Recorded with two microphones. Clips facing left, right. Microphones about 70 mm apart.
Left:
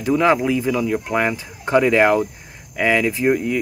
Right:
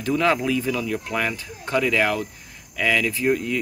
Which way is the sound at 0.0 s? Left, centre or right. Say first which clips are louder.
Left 4 dB; centre.